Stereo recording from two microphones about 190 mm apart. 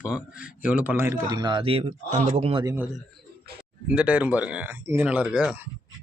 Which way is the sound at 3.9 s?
5° right (ahead or behind).